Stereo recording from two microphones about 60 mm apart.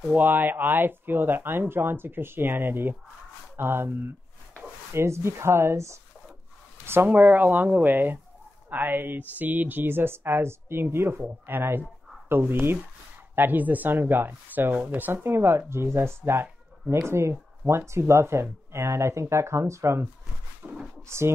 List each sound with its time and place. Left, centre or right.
0.1 s speech: right
4.9 s speech: right
7.1 s speech: right
20.6 s speech: right